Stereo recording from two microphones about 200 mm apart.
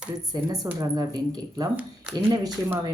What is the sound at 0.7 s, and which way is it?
Speech, 20° right (ahead or behind).